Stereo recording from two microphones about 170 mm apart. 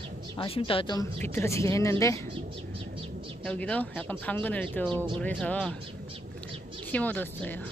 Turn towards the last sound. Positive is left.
turn(degrees=10)  # may be behind; listen again after turning